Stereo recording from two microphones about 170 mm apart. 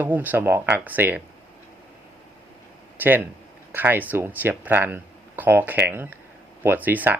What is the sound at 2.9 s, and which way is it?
Speech, 10° right (ahead or behind).